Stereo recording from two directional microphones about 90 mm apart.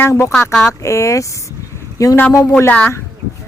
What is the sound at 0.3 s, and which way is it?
Speech, 20° left (ahead or behind).